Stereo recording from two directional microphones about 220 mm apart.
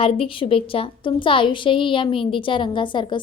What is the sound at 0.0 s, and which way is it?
A woman's voice, 25° left (ahead or behind).